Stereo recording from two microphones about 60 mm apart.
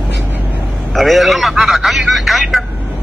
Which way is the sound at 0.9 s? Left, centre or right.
Centre.